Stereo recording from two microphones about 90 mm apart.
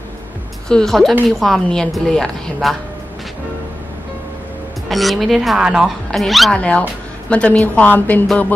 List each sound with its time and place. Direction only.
0.7 s a woman's voice: 5° left (ahead or behind)
4.8 s a woman's voice: centre (ahead or behind)
6.5 s a woman's voice: 15° left (ahead or behind)